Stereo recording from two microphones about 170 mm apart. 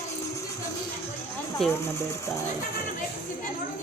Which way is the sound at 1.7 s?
15° left (ahead or behind).